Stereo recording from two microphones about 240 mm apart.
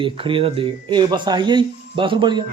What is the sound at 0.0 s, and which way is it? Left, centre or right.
Speech, right.